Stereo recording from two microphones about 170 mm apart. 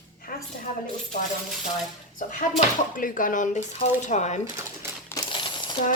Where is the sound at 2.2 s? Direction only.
50° left (ahead or behind).